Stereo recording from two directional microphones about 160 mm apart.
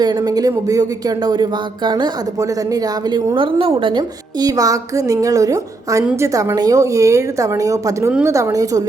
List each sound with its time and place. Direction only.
0.0 s speech: 25° right (ahead or behind)